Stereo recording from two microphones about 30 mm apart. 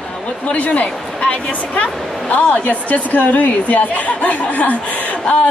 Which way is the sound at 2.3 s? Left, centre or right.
Left.